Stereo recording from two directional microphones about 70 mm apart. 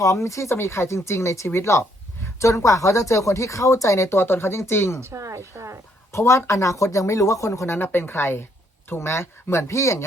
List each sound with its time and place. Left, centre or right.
0.0 s speech: left
4.1 s speech: left
4.9 s speech: right
6.1 s speech: left
7.7 s speech: left